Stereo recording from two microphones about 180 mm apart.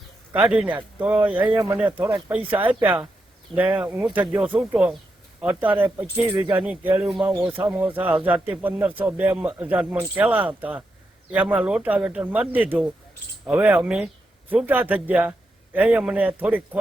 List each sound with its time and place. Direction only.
0.3 s a man's voice: 5° right (ahead or behind)
6.2 s speech: 25° right (ahead or behind)
6.6 s a man's voice: 10° right (ahead or behind)